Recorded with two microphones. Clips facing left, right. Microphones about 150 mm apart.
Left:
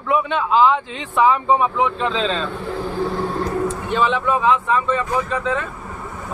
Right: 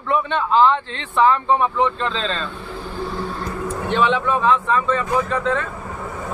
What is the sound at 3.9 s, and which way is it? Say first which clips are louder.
Speech: right 1 dB; 5° left (ahead or behind).